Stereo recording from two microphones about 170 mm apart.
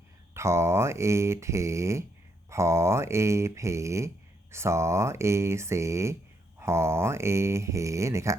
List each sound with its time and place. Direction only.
0.3 s speech: 15° right (ahead or behind)